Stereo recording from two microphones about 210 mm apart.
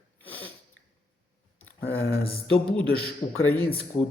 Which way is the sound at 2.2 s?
25° left (ahead or behind).